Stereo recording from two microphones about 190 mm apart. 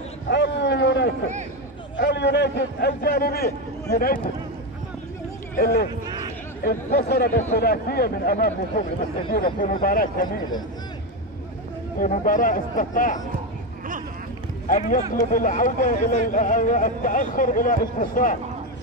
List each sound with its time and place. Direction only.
0.3 s a sound: 65° left (ahead or behind)
3.9 s speech: 50° left (ahead or behind)
5.6 s speech: 50° left (ahead or behind)
12.0 s speech: 45° left (ahead or behind)
14.7 s speech: 45° left (ahead or behind)